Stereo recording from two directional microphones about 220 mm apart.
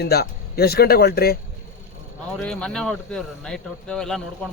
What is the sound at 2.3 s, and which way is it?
Speech, 5° left (ahead or behind).